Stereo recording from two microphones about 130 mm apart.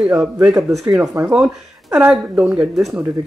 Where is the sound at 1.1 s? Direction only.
10° right (ahead or behind).